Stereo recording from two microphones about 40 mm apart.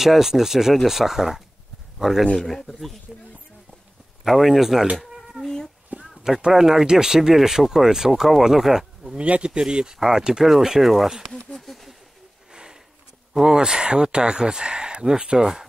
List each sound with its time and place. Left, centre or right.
0.0 s speech: centre
4.2 s speech: centre
5.0 s cat: centre
5.4 s cat: centre
5.9 s speech: centre
9.2 s speech: right; by 11.9 s centre
13.3 s speech: centre